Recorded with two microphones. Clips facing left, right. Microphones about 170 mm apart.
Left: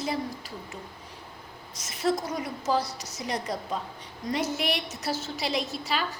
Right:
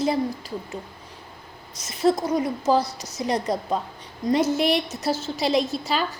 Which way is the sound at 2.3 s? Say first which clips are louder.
Right 7 dB; 25° right (ahead or behind).